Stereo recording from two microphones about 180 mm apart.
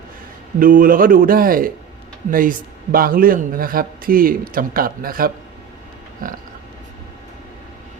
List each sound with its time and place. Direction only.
0.6 s a man's voice: 50° right (ahead or behind)